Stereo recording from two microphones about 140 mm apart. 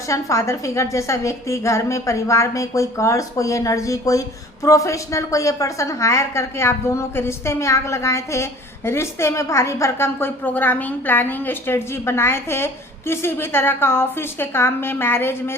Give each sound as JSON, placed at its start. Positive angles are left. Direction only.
{"t": 0.1, "sound": "a woman's voice", "side_deg": 20}